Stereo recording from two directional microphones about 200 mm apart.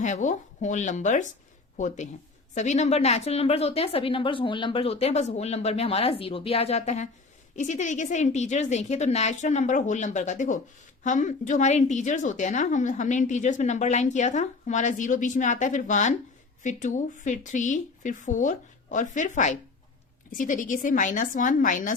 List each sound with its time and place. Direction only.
0.0 s a woman's voice: 40° left (ahead or behind)